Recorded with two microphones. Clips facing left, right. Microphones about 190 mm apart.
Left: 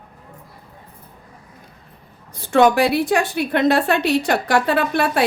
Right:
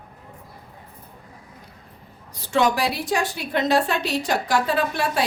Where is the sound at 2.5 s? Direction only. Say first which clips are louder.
Left 6 dB; 55° left (ahead or behind).